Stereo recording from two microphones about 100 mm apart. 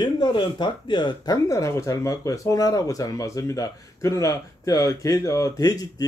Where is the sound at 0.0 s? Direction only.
55° left (ahead or behind).